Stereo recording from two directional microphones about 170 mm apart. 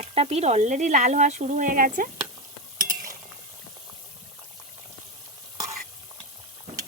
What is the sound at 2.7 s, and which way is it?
Cutlery, 55° right (ahead or behind).